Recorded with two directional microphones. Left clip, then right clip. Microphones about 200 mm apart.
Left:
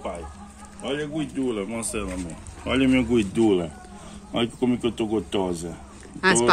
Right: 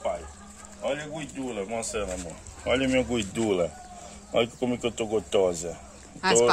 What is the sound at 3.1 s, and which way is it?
Speech, 25° right (ahead or behind).